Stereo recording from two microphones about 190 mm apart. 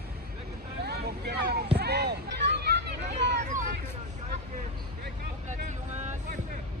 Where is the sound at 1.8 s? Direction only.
60° right (ahead or behind).